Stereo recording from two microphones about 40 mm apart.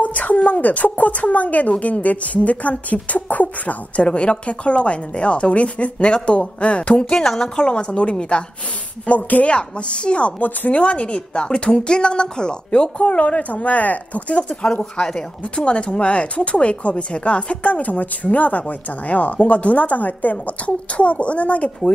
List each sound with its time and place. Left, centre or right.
0.0 s a sound: left
0.5 s speech: left
7.1 s a woman's voice: centre
9.0 s speech: left
9.5 s a woman's voice: left
13.0 s speech: left
14.6 s a woman's voice: left